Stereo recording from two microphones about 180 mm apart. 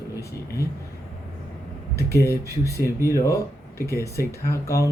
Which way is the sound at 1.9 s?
15° left (ahead or behind).